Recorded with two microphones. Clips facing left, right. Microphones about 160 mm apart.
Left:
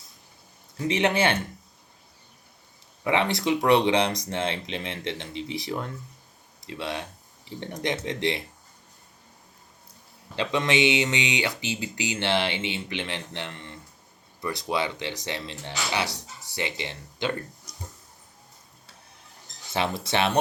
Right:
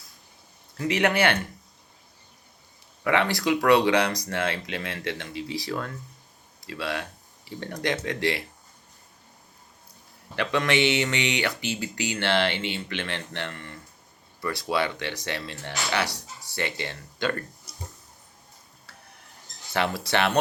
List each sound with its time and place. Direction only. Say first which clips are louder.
0.8 s speech: even; 25° left (ahead or behind)
3.0 s speech: right 1 dB; 20° left (ahead or behind)
10.3 s speech: even; 20° left (ahead or behind)
19.7 s speech: right 1 dB; 20° left (ahead or behind)